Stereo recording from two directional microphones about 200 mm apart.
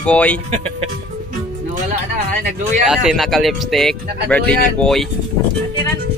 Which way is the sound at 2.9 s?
5° right (ahead or behind).